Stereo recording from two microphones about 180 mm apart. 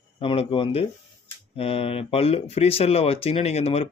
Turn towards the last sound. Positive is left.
turn(degrees=35)  # may be behind; listen again after turning